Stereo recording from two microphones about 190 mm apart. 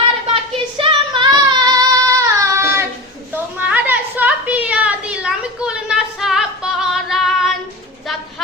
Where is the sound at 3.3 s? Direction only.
10° right (ahead or behind).